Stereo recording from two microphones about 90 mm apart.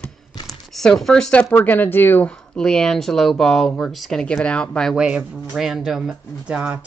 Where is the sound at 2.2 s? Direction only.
10° left (ahead or behind).